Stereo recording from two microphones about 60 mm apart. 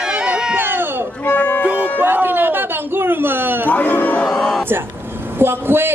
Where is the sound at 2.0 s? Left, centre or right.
Right.